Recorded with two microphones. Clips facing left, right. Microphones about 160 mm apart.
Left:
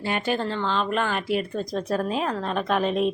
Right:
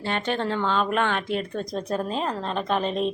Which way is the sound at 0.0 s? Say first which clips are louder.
Left 1 dB; 10° left (ahead or behind).